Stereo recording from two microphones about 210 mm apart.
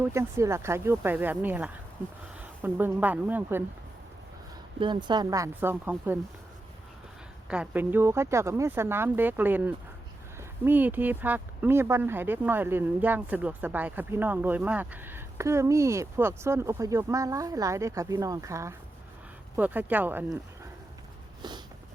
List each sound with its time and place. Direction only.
0.0 s speech: 10° right (ahead or behind)
4.8 s speech: 20° right (ahead or behind)
7.5 s speech: 5° right (ahead or behind)
21.4 s a sound: 20° right (ahead or behind)